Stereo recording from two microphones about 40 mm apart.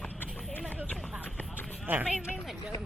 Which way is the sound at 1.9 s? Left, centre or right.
Right.